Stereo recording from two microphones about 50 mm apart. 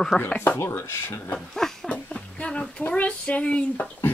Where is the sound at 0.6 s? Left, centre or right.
Left.